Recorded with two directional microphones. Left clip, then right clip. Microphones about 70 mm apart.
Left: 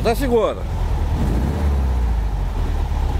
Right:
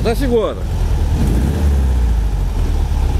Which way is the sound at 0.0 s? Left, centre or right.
Left.